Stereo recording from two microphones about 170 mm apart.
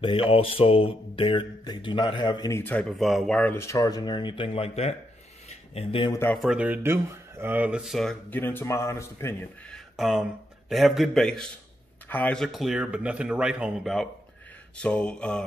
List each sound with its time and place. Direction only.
0.0 s speech: 30° left (ahead or behind)
2.5 s speech: 10° left (ahead or behind); by 6.1 s 30° left (ahead or behind)
6.3 s speech: centre (ahead or behind); by 9.8 s 15° left (ahead or behind)
9.9 s a man's voice: centre (ahead or behind)